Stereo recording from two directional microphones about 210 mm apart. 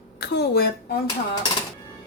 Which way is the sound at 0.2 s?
50° left (ahead or behind).